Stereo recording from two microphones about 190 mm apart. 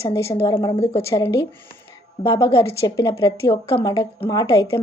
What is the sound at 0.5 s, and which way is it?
Speech, 25° left (ahead or behind).